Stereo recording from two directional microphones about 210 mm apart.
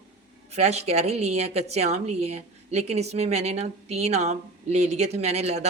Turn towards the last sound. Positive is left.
turn(degrees=-30)  # may be behind; listen again after turning